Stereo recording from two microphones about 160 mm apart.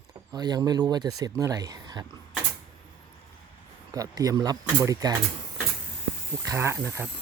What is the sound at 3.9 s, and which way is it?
Speech, 25° right (ahead or behind).